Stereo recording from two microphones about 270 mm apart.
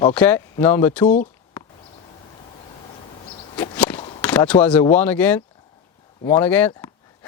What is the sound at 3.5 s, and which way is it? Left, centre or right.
Whip, centre.